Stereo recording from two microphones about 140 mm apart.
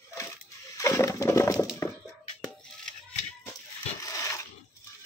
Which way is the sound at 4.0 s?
25° left (ahead or behind).